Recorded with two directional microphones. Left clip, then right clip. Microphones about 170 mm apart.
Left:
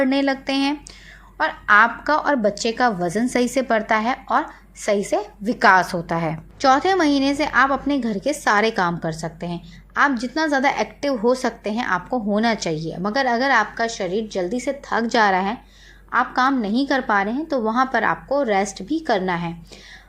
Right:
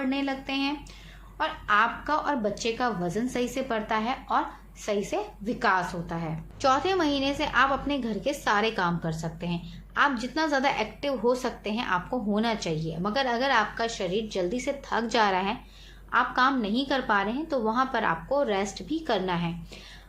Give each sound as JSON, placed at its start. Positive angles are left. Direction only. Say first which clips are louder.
{"t": 0.0, "sound": "a woman's voice", "louder": "left 10 dB", "side_deg": 50}